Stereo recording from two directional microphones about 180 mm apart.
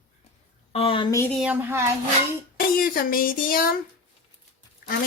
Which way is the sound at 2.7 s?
50° left (ahead or behind).